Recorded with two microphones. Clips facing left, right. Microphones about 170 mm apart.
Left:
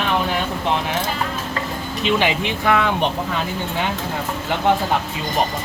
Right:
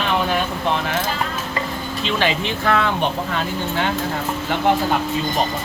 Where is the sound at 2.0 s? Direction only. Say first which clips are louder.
Left 2 dB; 15° left (ahead or behind).